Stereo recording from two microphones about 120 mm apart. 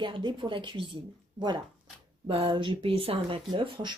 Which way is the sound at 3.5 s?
40° right (ahead or behind).